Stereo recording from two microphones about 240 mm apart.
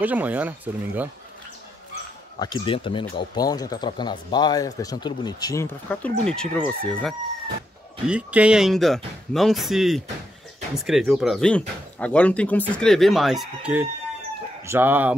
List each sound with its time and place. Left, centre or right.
0.0 s speech: centre
2.3 s speech: centre